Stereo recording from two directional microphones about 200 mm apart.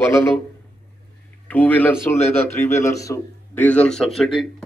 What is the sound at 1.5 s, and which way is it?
A man's voice, 10° left (ahead or behind).